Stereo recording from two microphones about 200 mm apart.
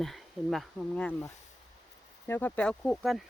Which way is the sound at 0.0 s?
Centre (ahead or behind).